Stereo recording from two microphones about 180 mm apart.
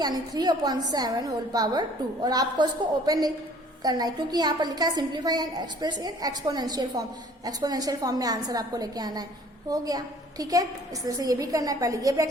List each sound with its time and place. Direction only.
0.0 s a woman's voice: 20° right (ahead or behind)